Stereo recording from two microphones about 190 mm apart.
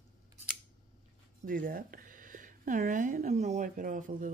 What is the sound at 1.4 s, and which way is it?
Speech, 45° right (ahead or behind).